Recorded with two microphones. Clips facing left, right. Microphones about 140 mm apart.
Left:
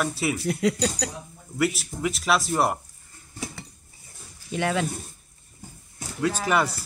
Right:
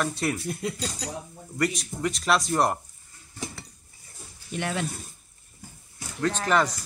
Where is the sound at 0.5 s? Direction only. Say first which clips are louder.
Left 7 dB; 90° left.